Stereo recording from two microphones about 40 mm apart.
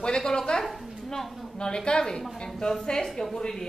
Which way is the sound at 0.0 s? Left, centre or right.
Centre.